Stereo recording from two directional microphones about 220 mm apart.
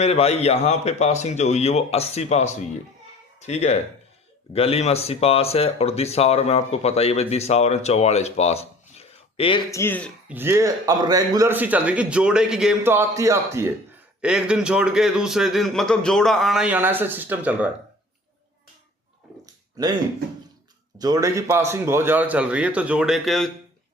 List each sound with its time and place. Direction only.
0.0 s speech: 30° left (ahead or behind)
9.7 s speech: 10° left (ahead or behind)
10.2 s a man's voice: 10° right (ahead or behind)
19.7 s speech: 20° right (ahead or behind)
21.0 s speech: 15° right (ahead or behind); by 23.5 s centre (ahead or behind)